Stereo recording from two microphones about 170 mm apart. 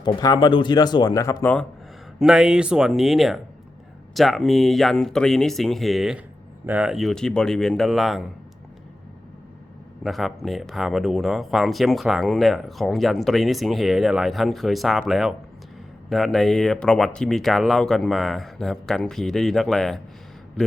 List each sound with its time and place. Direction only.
0.0 s speech: 25° left (ahead or behind)
2.1 s speech: 5° right (ahead or behind)
10.0 s speech: centre (ahead or behind)